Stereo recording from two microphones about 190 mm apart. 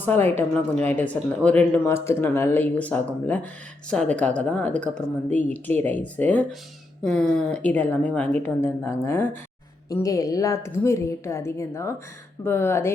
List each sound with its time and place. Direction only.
0.0 s speech: 10° left (ahead or behind)